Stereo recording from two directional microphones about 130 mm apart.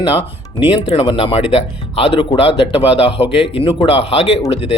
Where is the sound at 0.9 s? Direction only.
45° left (ahead or behind).